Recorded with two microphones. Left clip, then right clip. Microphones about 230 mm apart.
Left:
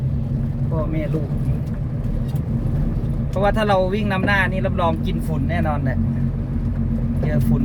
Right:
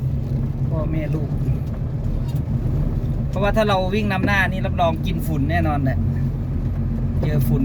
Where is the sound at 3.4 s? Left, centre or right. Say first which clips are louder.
Left 1 dB; centre.